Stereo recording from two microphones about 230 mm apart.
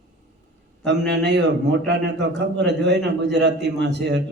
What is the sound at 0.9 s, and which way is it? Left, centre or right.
Speech, right.